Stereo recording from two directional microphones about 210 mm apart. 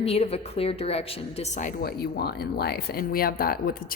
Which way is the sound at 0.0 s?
30° left (ahead or behind).